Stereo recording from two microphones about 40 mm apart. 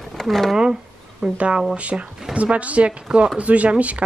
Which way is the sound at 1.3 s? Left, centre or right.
Right.